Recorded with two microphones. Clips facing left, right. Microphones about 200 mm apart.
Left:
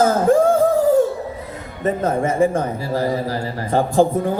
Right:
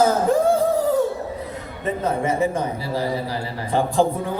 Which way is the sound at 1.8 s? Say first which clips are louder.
Left 3 dB; 45° left (ahead or behind).